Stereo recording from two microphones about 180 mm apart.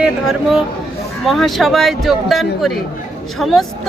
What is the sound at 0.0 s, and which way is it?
Speech, 5° right (ahead or behind).